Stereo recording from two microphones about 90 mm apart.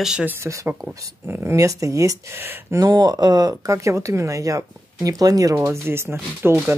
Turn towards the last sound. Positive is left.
turn(degrees=-25)  # may be behind; listen again after turning